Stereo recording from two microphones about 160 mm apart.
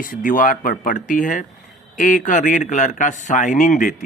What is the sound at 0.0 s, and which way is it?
Speech, 60° left (ahead or behind).